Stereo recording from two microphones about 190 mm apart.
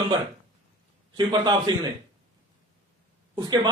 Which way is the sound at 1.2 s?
20° right (ahead or behind).